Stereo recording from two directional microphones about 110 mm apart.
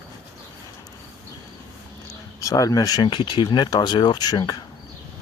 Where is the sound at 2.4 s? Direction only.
30° left (ahead or behind).